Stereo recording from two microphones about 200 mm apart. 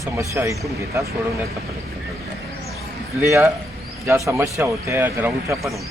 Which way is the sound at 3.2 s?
15° right (ahead or behind).